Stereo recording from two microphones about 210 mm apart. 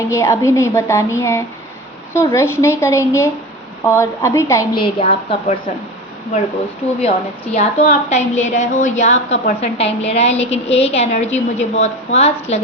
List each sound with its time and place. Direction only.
0.1 s a woman's voice: 15° left (ahead or behind); by 5.7 s 30° left (ahead or behind)
7.5 s a woman's voice: 35° left (ahead or behind)